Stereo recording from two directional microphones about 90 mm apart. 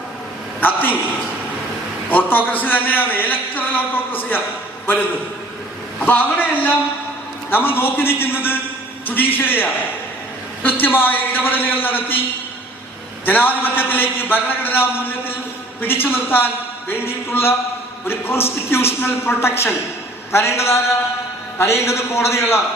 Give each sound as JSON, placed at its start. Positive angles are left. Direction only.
{"t": 0.6, "sound": "a man's voice", "side_deg": 20}
{"t": 2.0, "sound": "a man's voice", "side_deg": 20}
{"t": 6.0, "sound": "a man's voice", "side_deg": 20}
{"t": 13.2, "sound": "a man's voice", "side_deg": 20}